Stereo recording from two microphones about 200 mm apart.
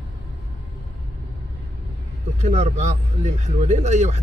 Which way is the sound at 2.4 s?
35° right (ahead or behind).